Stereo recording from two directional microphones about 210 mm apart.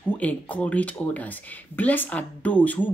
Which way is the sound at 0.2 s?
5° left (ahead or behind).